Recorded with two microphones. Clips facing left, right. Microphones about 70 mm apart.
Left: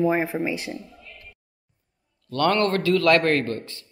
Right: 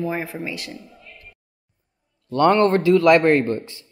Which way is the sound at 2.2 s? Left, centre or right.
Centre.